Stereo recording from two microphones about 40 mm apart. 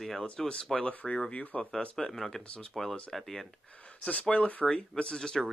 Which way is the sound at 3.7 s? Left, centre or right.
Left.